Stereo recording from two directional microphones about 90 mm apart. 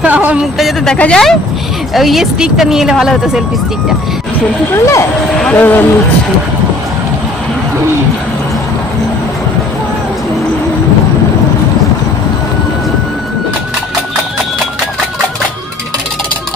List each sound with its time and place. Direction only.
0.0 s a sound: 20° right (ahead or behind)
0.9 s speech: 10° left (ahead or behind)
4.7 s speech: 35° left (ahead or behind)
5.5 s speech: 25° left (ahead or behind)